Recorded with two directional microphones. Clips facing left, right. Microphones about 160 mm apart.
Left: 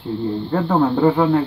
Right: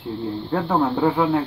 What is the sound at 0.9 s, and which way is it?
Speech, 10° right (ahead or behind).